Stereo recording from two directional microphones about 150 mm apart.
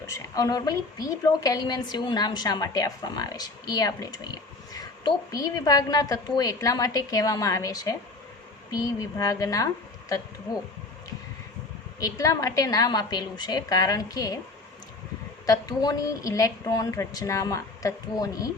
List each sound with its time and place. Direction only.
0.1 s a woman's voice: 25° left (ahead or behind)
11.9 s a woman's voice: 20° left (ahead or behind)
15.4 s a woman's voice: 25° left (ahead or behind)